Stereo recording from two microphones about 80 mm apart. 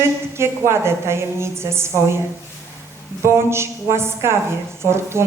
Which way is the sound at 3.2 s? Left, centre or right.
Right.